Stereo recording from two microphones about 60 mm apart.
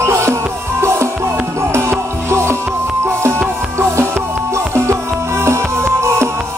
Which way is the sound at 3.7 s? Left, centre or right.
Right.